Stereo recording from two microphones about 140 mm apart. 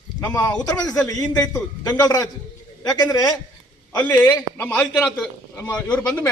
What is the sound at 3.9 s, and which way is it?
A man's voice, 15° left (ahead or behind).